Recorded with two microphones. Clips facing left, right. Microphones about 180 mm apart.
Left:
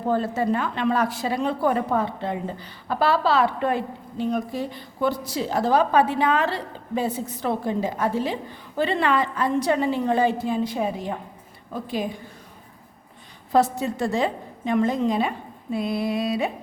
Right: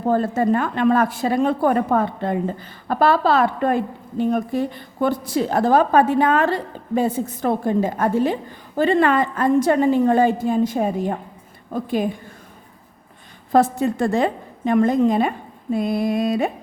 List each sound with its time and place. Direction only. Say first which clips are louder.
0.1 s speech: right 4 dB; 50° right (ahead or behind)
13.5 s speech: right 4 dB; 55° right (ahead or behind)